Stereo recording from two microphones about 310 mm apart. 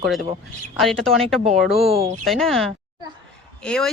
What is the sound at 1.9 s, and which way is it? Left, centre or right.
Speech, centre.